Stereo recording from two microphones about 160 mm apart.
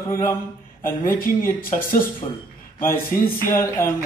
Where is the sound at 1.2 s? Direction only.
60° left (ahead or behind).